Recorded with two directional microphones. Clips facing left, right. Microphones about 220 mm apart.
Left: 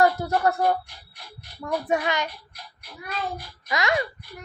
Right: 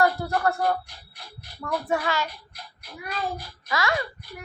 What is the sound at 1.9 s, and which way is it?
Speech, 20° left (ahead or behind).